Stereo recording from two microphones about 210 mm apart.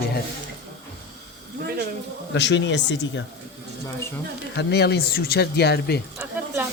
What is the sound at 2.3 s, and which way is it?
Speech, 60° left (ahead or behind).